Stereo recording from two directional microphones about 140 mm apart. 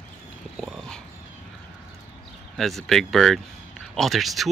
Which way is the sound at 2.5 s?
Centre (ahead or behind).